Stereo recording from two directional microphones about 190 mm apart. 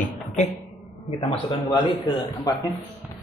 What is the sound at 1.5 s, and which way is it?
A man's voice, 20° left (ahead or behind).